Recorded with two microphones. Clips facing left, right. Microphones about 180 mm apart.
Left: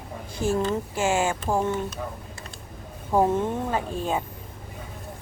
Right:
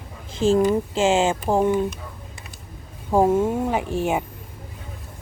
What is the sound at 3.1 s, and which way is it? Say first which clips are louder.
Speech: right 4 dB; 10° right (ahead or behind).